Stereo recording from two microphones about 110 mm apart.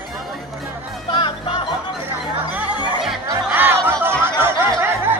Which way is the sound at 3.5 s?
20° right (ahead or behind).